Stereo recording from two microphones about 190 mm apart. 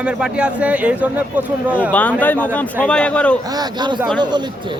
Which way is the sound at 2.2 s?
10° left (ahead or behind).